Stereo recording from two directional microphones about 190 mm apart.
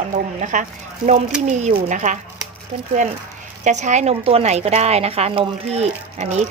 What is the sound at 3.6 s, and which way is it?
A woman's voice, 40° right (ahead or behind).